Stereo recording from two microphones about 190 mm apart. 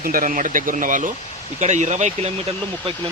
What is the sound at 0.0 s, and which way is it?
Speech, 50° right (ahead or behind).